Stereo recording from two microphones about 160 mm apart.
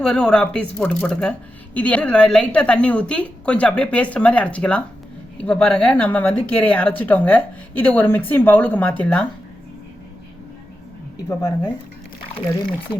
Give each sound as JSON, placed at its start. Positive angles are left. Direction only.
{"t": 0.0, "sound": "speech", "side_deg": 5}
{"t": 11.3, "sound": "speech", "side_deg": 25}